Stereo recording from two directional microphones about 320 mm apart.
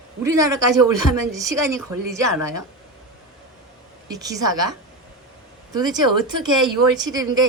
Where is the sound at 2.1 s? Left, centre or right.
Right.